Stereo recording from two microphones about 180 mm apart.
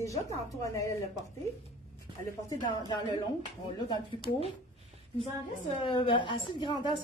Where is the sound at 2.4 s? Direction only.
25° left (ahead or behind).